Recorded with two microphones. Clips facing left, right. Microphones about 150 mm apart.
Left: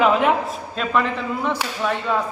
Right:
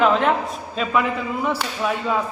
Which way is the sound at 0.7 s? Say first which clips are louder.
Even; 5° right (ahead or behind).